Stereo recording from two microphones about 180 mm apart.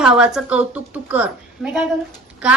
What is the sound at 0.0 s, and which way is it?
A woman's voice, 5° right (ahead or behind).